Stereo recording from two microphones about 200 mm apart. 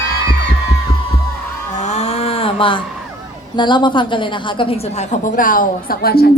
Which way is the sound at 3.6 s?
25° left (ahead or behind).